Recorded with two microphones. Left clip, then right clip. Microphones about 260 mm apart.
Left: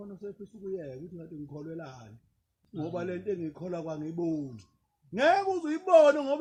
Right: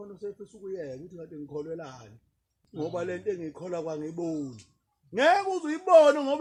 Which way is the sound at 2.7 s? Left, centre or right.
Right.